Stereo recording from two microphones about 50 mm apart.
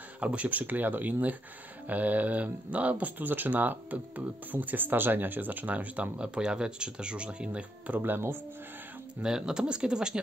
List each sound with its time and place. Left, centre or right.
0.2 s speech: right
8.0 s speech: right
9.2 s speech: centre